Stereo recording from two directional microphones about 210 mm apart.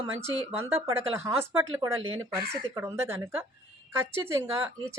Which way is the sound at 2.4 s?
10° right (ahead or behind).